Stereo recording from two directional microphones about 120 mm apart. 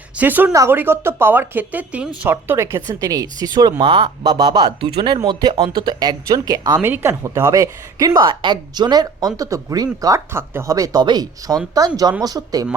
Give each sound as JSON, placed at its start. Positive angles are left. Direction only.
{"t": 0.2, "sound": "speech", "side_deg": -15}
{"t": 6.7, "sound": "speech", "side_deg": -15}